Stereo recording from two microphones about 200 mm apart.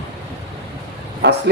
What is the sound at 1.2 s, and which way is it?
Speech, 60° right (ahead or behind).